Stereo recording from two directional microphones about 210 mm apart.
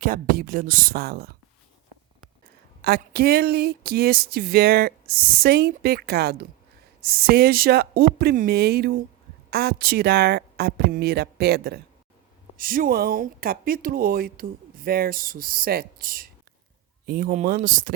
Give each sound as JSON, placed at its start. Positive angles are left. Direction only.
{"t": 0.0, "sound": "speech", "side_deg": -40}
{"t": 2.8, "sound": "speech", "side_deg": -50}